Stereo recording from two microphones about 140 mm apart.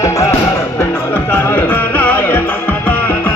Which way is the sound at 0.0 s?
20° left (ahead or behind).